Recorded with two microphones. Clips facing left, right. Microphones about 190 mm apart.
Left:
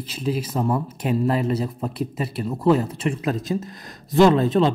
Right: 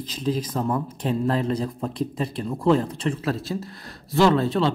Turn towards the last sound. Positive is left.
turn(degrees=20)  # may be behind; listen again after turning